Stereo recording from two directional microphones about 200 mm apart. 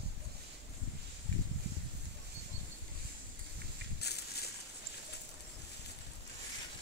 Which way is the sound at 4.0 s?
55° left (ahead or behind).